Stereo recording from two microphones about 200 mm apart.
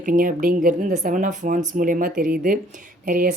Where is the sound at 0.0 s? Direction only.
40° right (ahead or behind).